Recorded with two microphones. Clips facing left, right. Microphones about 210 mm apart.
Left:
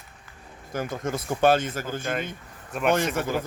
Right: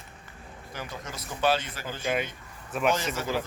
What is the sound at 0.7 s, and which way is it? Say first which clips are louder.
Speech: left 10 dB; 50° left (ahead or behind).